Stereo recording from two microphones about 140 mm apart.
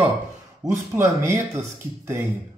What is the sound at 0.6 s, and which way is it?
Speech, 20° right (ahead or behind).